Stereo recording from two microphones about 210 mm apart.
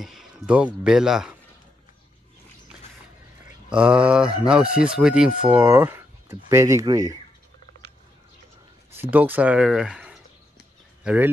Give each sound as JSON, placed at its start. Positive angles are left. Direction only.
{"t": 0.0, "sound": "speech", "side_deg": 0}
{"t": 3.7, "sound": "speech", "side_deg": -5}
{"t": 9.1, "sound": "speech", "side_deg": -10}